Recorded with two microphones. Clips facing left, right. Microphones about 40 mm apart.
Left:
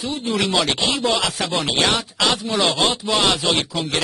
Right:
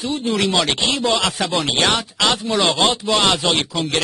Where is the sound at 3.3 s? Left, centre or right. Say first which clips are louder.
Right 1 dB; centre.